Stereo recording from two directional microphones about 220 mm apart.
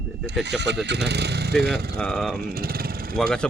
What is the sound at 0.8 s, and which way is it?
Speech, 50° right (ahead or behind).